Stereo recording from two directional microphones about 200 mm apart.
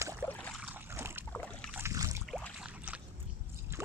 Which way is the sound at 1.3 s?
5° left (ahead or behind).